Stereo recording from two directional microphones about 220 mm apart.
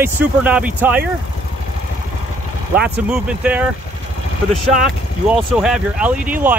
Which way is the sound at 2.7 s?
5° right (ahead or behind).